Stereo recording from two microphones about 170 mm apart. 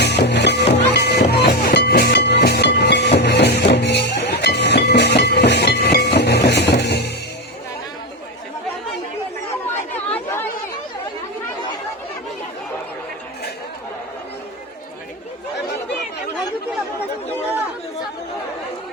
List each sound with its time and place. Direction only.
0.0 s music: 80° left
9.9 s chatter: 10° left (ahead or behind)